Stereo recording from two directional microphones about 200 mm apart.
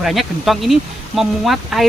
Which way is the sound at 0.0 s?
Centre (ahead or behind).